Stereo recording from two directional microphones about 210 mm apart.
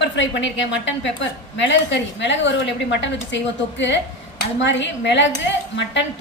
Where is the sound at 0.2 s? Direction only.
60° left (ahead or behind).